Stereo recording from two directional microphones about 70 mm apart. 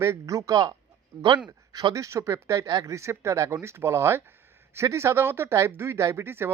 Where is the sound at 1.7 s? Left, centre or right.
Right.